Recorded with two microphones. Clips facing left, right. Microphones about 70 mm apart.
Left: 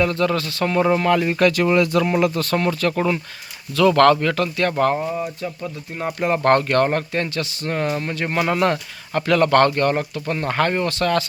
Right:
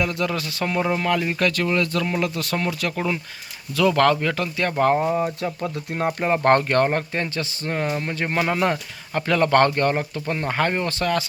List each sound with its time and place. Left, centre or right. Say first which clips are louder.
0.0 s speech: left 5 dB; centre
2.2 s speech: left 5 dB; centre
5.0 s speech: right 3 dB; right
6.1 s speech: left 2 dB; centre